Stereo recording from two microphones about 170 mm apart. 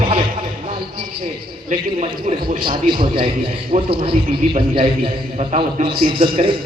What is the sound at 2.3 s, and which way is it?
A man's voice, 40° right (ahead or behind).